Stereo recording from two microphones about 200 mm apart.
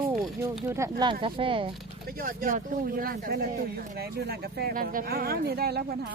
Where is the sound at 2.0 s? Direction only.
45° right (ahead or behind).